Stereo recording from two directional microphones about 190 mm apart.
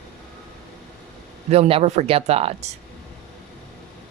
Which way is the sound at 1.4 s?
30° right (ahead or behind).